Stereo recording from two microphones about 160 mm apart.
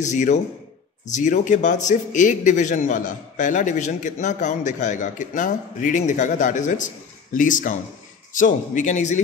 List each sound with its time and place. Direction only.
0.0 s a man's voice: 50° left (ahead or behind)